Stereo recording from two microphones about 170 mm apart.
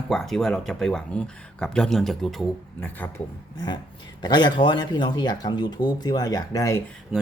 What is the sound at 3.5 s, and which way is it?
Speech, 25° left (ahead or behind).